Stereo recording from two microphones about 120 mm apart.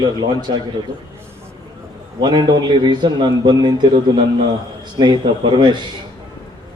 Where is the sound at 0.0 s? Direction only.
35° right (ahead or behind).